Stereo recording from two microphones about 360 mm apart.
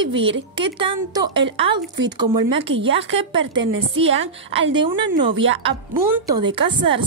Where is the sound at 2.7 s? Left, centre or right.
Right.